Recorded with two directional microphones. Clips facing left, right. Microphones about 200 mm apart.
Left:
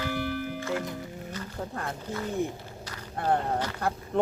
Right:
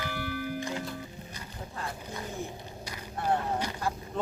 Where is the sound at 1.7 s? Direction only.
55° left (ahead or behind).